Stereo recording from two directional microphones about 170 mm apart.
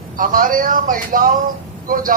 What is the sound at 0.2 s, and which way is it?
A man's voice, 55° right (ahead or behind).